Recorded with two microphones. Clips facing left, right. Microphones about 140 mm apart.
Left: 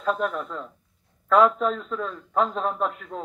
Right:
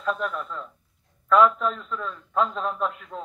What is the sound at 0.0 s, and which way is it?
A man's voice, 40° left (ahead or behind).